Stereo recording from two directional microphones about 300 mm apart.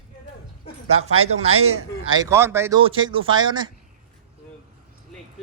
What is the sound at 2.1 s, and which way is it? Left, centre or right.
Speech, centre.